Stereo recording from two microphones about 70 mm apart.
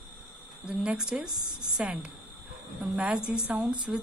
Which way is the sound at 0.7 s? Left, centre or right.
Centre.